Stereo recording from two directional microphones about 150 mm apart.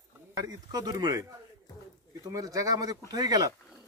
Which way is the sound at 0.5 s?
25° right (ahead or behind).